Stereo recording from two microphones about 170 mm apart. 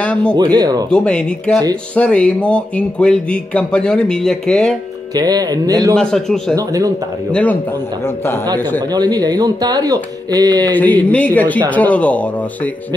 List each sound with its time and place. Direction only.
0.0 s speech: 5° left (ahead or behind)
0.4 s speech: 25° right (ahead or behind)
0.8 s speech: 5° left (ahead or behind)
5.1 s speech: 20° right (ahead or behind)
5.9 s speech: 5° left (ahead or behind)
6.5 s speech: 20° right (ahead or behind)
8.0 s speech: 15° left (ahead or behind)
8.9 s speech: 25° right (ahead or behind)
10.7 s speech: 10° left (ahead or behind)